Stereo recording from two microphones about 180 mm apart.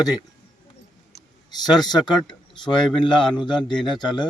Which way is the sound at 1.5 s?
25° left (ahead or behind).